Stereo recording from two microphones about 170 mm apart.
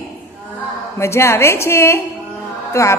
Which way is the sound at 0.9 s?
15° left (ahead or behind).